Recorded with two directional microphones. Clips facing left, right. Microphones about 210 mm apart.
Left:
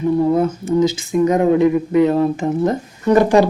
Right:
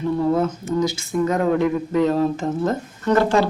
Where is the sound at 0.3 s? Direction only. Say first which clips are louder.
Left 5 dB; 20° left (ahead or behind).